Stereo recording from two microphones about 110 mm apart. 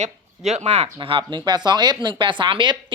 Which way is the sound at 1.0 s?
50° right (ahead or behind).